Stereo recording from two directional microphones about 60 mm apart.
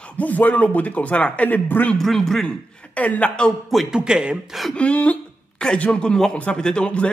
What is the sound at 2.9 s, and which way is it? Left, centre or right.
Speech, left.